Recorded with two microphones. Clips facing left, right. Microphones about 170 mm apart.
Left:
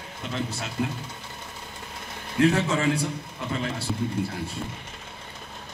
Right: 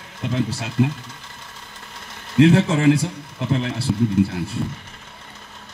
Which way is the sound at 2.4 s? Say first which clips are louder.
Right 6 dB; 80° right.